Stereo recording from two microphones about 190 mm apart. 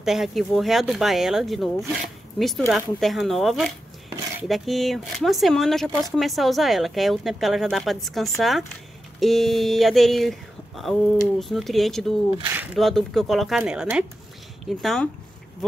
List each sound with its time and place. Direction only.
0.0 s a woman's voice: centre (ahead or behind)
12.4 s speech: 10° right (ahead or behind)
12.7 s a woman's voice: centre (ahead or behind)